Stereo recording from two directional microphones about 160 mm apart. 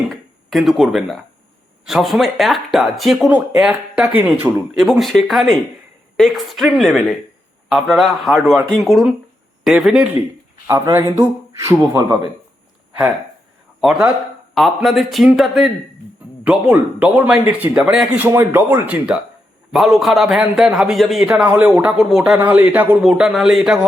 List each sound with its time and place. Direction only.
0.1 s a sound: centre (ahead or behind)
1.8 s a man's voice: centre (ahead or behind)
4.8 s a man's voice: centre (ahead or behind)
10.7 s a man's voice: 20° right (ahead or behind)
13.8 s a man's voice: 5° right (ahead or behind)
19.7 s a man's voice: centre (ahead or behind)